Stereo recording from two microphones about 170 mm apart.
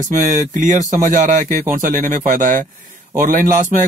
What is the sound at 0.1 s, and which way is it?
Speech, 45° right (ahead or behind).